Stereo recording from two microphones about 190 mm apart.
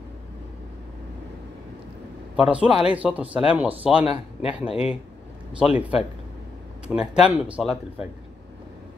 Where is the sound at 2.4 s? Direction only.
5° right (ahead or behind).